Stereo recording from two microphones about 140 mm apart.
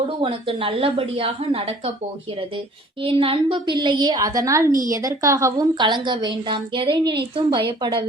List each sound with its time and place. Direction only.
0.0 s a woman's voice: 40° right (ahead or behind)
3.0 s a woman's voice: 40° right (ahead or behind)